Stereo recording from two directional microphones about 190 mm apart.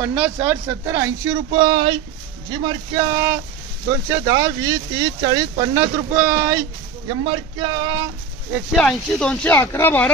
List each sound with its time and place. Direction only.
0.0 s speech: 10° right (ahead or behind)
8.7 s speech: 5° left (ahead or behind)